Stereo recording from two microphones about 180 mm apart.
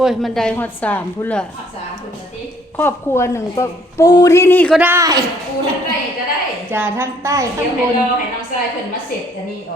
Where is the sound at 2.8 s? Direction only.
15° left (ahead or behind).